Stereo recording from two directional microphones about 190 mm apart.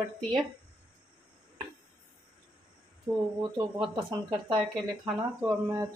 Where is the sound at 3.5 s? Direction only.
25° right (ahead or behind).